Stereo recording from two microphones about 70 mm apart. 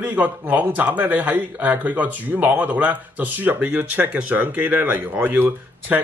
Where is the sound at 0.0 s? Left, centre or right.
Right.